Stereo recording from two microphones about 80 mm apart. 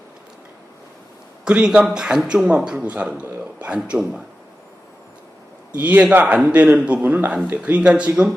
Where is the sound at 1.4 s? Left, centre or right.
Centre.